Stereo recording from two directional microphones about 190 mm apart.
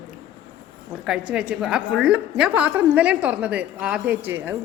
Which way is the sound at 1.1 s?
5° right (ahead or behind).